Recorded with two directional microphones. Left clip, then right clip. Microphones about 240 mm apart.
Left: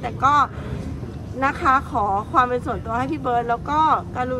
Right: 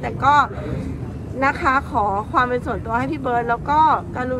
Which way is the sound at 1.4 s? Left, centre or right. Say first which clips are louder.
Right 1 dB; centre.